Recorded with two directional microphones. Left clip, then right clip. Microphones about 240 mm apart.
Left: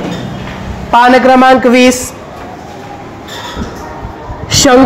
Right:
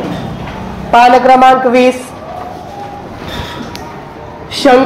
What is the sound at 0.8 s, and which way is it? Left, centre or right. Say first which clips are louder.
A man's voice: even; left.